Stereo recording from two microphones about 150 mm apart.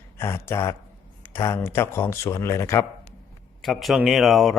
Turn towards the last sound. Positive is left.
turn(degrees=0)  # may be behind; listen again after turning